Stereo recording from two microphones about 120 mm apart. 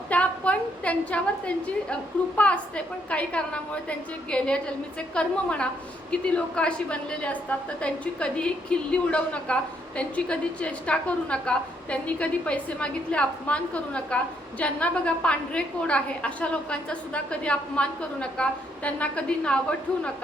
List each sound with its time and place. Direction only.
0.1 s a woman's voice: 10° left (ahead or behind)